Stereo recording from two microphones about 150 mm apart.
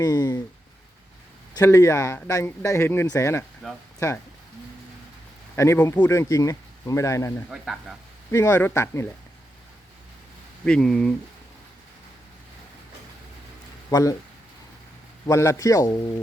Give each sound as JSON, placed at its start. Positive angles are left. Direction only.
{"t": 0.0, "sound": "speech", "side_deg": 25}
{"t": 1.5, "sound": "speech", "side_deg": 20}
{"t": 3.6, "sound": "speech", "side_deg": 0}
{"t": 5.5, "sound": "speech", "side_deg": 15}
{"t": 7.5, "sound": "speech", "side_deg": 0}
{"t": 8.3, "sound": "speech", "side_deg": 15}
{"t": 10.7, "sound": "speech", "side_deg": 5}
{"t": 13.9, "sound": "speech", "side_deg": 25}
{"t": 15.3, "sound": "speech", "side_deg": 20}